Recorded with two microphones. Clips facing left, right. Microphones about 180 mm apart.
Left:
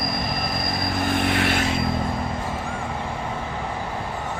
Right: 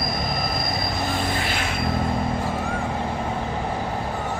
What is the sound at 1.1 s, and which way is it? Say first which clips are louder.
Vehicle: left 4 dB; 65° left (ahead or behind).